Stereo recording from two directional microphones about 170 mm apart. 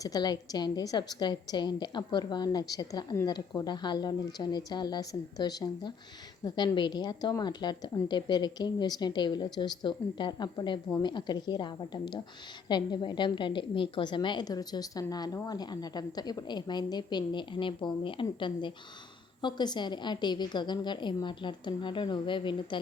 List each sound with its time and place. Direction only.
0.0 s a woman's voice: 25° left (ahead or behind)